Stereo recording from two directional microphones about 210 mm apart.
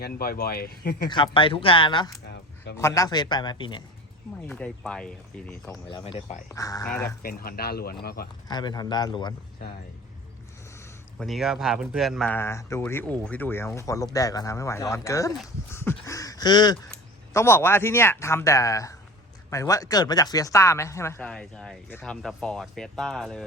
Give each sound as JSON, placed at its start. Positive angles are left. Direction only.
{"t": 0.0, "sound": "speech", "side_deg": 45}
{"t": 1.1, "sound": "speech", "side_deg": 25}
{"t": 4.4, "sound": "speech", "side_deg": 5}
{"t": 5.9, "sound": "speech", "side_deg": 25}
{"t": 7.2, "sound": "speech", "side_deg": 45}
{"t": 8.4, "sound": "speech", "side_deg": 20}
{"t": 11.2, "sound": "speech", "side_deg": 0}